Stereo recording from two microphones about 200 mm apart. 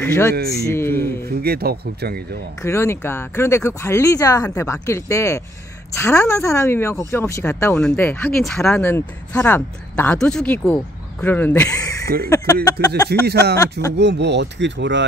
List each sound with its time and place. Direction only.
0.0 s speech: 10° left (ahead or behind)
1.4 s speech: 50° right (ahead or behind)
2.6 s speech: 15° left (ahead or behind)
13.3 s speech: 55° right (ahead or behind)